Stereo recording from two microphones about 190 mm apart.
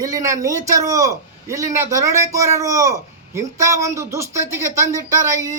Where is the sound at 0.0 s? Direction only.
15° right (ahead or behind).